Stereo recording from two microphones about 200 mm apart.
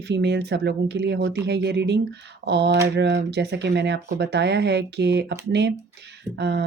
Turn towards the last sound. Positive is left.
turn(degrees=-60)  # may be behind; listen again after turning